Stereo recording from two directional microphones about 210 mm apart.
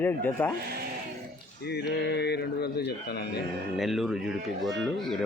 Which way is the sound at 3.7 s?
Centre (ahead or behind).